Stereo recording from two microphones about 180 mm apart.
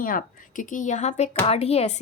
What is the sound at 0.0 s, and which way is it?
A woman's voice, 50° left (ahead or behind).